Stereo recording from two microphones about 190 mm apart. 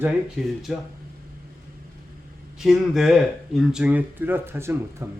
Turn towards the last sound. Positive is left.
turn(degrees=-15)  # may be behind; listen again after turning